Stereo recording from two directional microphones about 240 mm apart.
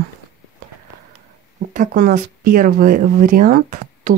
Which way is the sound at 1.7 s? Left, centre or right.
Right.